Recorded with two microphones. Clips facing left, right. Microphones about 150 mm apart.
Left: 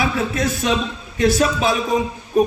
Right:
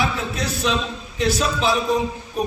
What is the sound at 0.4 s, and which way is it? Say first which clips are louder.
Speech: even; 50° left (ahead or behind).